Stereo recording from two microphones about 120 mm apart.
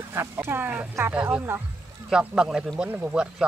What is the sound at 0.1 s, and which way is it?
Speech, 20° right (ahead or behind).